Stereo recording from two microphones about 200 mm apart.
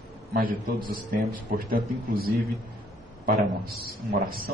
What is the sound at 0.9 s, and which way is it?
A man's voice, 45° right (ahead or behind).